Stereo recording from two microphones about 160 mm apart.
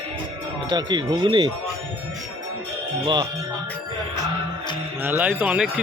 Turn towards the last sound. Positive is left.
turn(degrees=-10)  # may be behind; listen again after turning